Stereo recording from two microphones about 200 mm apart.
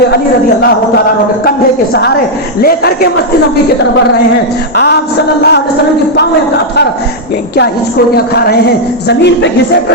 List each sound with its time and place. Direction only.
1.5 s speech: 50° left (ahead or behind)
5.4 s speech: 55° left (ahead or behind)
8.1 s speech: 50° left (ahead or behind)